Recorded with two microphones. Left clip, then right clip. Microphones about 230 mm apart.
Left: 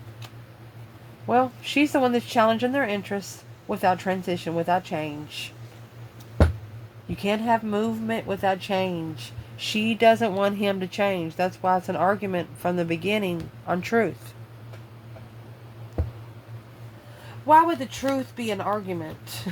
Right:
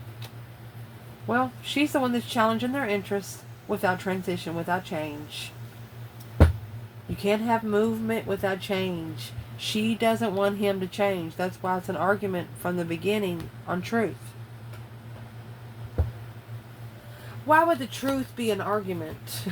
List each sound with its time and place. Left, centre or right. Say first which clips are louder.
1.3 s speech: left 4 dB; left
7.2 s speech: left 2 dB; left
17.5 s speech: left 3 dB; left